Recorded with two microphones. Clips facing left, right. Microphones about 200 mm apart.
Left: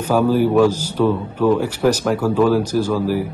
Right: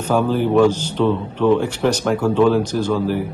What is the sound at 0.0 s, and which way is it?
A man's voice, 10° left (ahead or behind).